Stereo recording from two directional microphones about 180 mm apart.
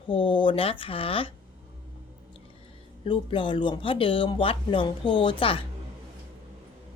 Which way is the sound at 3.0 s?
30° left (ahead or behind).